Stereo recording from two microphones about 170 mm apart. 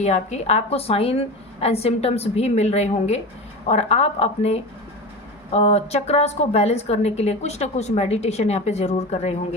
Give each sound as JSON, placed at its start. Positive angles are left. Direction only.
{"t": 0.0, "sound": "a woman's voice", "side_deg": 40}